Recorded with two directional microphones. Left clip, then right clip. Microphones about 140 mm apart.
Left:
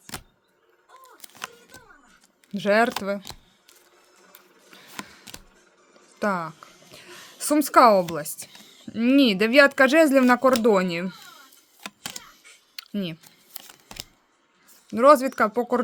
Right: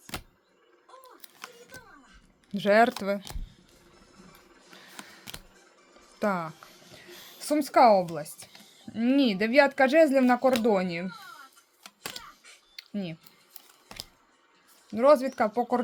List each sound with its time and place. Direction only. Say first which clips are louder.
0.1 s vehicle: even; 10° right (ahead or behind)
1.7 s a sound: right 1 dB; 10° right (ahead or behind)
2.5 s speech: left 1 dB; 5° left (ahead or behind)
4.7 s a sound: left 6 dB; centre (ahead or behind)
6.1 s speech: left 3 dB; 10° left (ahead or behind)
6.9 s speech: left 4 dB; 30° left (ahead or behind)
12.7 s a sound: left 5 dB; 40° left (ahead or behind)
13.8 s camera: left 2 dB; 15° left (ahead or behind)
14.8 s speech: left 5 dB; 40° left (ahead or behind)